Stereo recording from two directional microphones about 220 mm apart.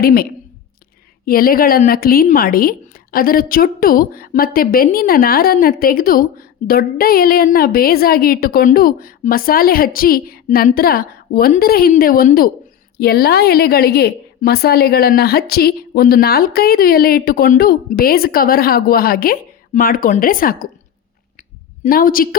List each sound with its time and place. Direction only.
0.0 s a woman's voice: 45° left (ahead or behind)
21.8 s a woman's voice: 40° left (ahead or behind)